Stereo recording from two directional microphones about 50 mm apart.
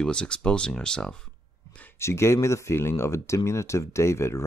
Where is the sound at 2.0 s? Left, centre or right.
Left.